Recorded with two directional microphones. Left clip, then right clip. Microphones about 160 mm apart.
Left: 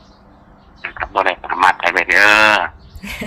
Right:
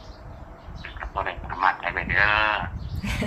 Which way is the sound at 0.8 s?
90° left.